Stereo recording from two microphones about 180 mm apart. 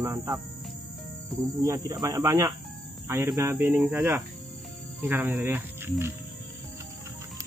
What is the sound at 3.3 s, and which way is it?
Cricket, 20° right (ahead or behind).